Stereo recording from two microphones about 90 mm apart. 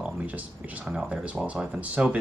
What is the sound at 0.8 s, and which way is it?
Speech, 10° right (ahead or behind).